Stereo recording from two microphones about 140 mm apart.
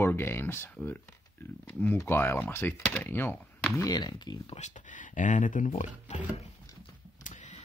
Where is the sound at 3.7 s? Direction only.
30° left (ahead or behind).